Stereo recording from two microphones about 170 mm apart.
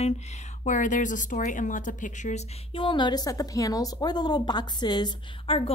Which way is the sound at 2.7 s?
30° left (ahead or behind).